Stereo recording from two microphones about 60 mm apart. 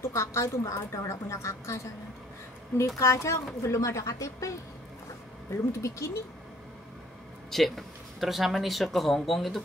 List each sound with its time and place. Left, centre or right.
0.0 s a woman's voice: left
3.0 s a woman's voice: left
5.7 s a woman's voice: left
7.5 s speech: centre